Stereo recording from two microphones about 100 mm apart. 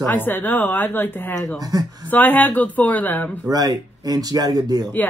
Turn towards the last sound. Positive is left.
turn(degrees=-40)  # may be behind; listen again after turning